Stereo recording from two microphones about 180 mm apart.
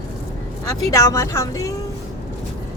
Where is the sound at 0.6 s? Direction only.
15° left (ahead or behind).